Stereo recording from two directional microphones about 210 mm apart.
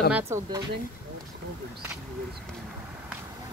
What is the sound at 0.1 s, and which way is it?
Speech, 15° right (ahead or behind).